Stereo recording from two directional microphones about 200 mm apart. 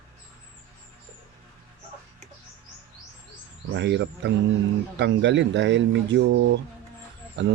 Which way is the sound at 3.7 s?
60° right (ahead or behind).